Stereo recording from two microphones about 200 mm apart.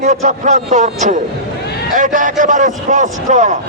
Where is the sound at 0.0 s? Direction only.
35° right (ahead or behind).